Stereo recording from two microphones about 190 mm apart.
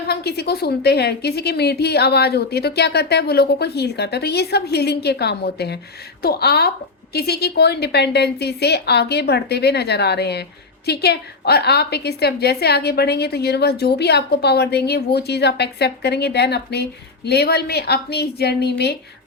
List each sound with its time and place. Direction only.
0.1 s a woman's voice: 55° left (ahead or behind)